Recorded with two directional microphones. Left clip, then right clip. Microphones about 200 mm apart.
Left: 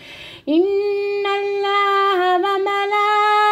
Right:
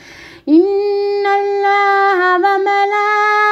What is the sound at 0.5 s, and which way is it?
Singing, 15° right (ahead or behind).